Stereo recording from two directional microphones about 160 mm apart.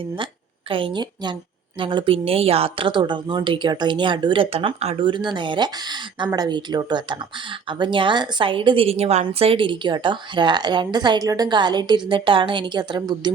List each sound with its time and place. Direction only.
0.7 s a woman's voice: 35° right (ahead or behind)